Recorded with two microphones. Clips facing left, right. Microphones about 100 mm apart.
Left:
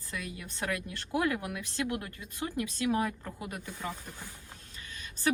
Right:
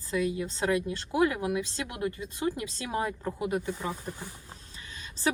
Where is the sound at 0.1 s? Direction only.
25° right (ahead or behind).